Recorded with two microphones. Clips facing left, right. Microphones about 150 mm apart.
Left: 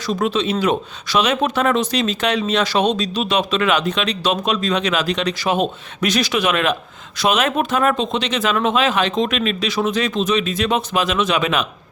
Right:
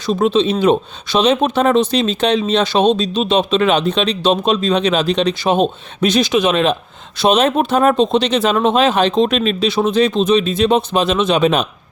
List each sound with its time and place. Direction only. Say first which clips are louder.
0.0 s speech: right 5 dB; 25° right (ahead or behind)